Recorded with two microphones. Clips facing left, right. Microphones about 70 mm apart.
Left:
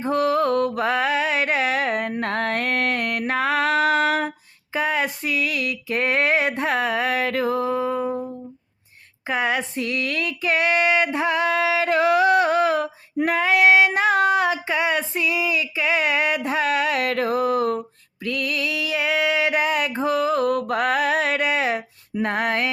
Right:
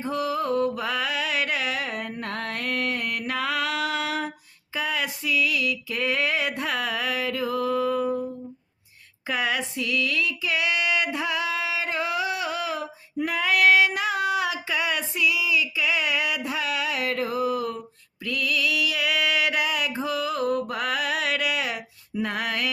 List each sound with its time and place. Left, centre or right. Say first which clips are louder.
0.0 s mantra: left 6 dB; left
0.8 s music: left 6 dB; left
3.2 s female singing: left 7 dB; left
4.7 s a sound: left 5 dB; left
7.5 s a sound: left 2 dB; left
13.3 s female singing: left 3 dB; left
20.5 s mantra: left 5 dB; left
22.1 s music: left 5 dB; left